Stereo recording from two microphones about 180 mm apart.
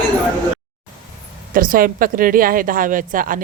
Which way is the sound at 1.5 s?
50° right (ahead or behind).